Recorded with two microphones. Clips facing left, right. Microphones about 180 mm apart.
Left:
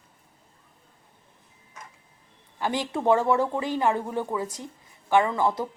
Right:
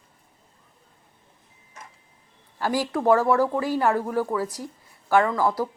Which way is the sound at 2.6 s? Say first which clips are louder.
Right 2 dB; 20° left (ahead or behind).